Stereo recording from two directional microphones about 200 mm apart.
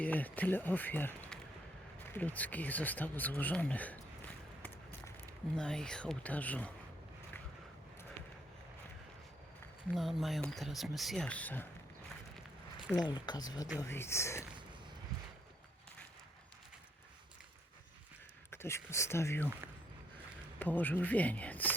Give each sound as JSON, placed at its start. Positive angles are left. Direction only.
{"t": 0.0, "sound": "speech", "side_deg": 10}
{"t": 4.6, "sound": "a sound", "side_deg": 10}
{"t": 5.5, "sound": "speech", "side_deg": 5}
{"t": 9.9, "sound": "speech", "side_deg": 0}
{"t": 13.1, "sound": "speech", "side_deg": 20}
{"t": 18.5, "sound": "speech", "side_deg": 10}
{"t": 20.6, "sound": "speech", "side_deg": 10}